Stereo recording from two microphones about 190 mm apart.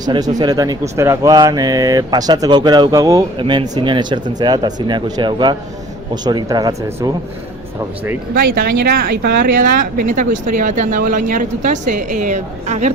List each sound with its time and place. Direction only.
0.0 s speech: 20° right (ahead or behind)
8.4 s speech: 50° right (ahead or behind)